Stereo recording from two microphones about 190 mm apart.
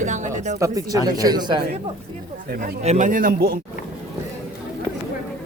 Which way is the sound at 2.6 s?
40° right (ahead or behind).